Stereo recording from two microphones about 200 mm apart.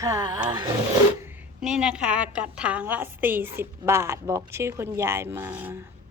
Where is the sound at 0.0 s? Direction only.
20° right (ahead or behind).